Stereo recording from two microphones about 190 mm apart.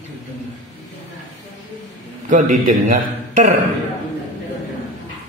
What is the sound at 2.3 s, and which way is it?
A man's voice, 45° right (ahead or behind).